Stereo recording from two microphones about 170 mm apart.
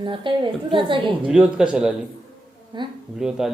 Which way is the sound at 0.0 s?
30° right (ahead or behind).